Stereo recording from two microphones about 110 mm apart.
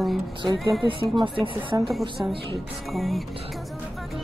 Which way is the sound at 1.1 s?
50° right (ahead or behind).